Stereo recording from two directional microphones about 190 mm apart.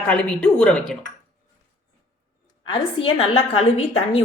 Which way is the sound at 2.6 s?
25° left (ahead or behind).